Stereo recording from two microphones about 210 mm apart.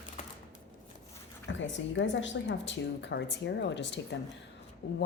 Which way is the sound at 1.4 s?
60° left (ahead or behind).